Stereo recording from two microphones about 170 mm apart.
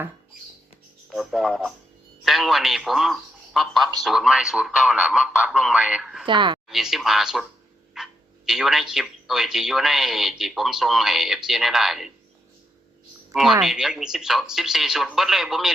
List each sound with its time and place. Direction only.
1.1 s speech: 5° right (ahead or behind)
6.2 s a woman's voice: 30° right (ahead or behind)
6.7 s speech: centre (ahead or behind)
13.3 s speech: centre (ahead or behind)